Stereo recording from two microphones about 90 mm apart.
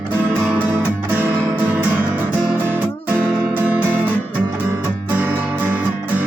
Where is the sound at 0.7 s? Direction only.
20° right (ahead or behind).